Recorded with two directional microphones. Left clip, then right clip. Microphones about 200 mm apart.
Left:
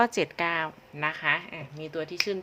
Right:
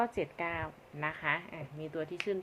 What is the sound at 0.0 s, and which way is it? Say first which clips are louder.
Speech: left 9 dB; 35° left (ahead or behind).